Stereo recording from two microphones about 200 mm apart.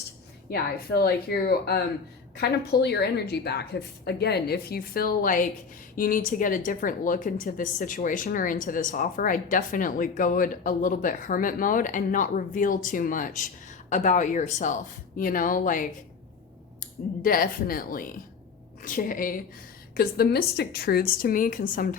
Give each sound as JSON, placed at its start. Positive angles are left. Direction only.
{"t": 0.5, "sound": "speech", "side_deg": 50}
{"t": 17.2, "sound": "speech", "side_deg": 45}